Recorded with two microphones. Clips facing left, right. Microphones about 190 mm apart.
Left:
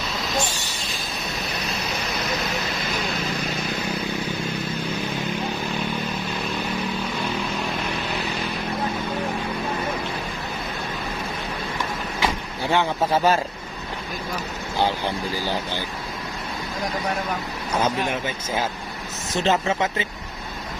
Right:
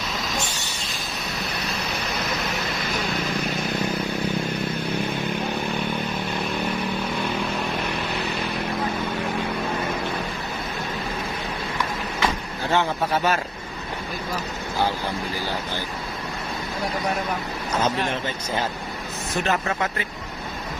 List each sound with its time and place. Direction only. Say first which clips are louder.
12.2 s vehicle: left 1 dB; 15° left (ahead or behind)
13.1 s speech: left 4 dB; 30° left (ahead or behind)
17.7 s speech: left 1 dB; 10° left (ahead or behind)
19.4 s speech: left 3 dB; 25° left (ahead or behind)